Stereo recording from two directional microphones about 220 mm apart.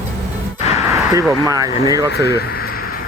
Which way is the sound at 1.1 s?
15° right (ahead or behind).